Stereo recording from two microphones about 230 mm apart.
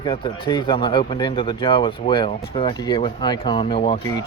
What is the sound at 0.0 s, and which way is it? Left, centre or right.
Speech, left.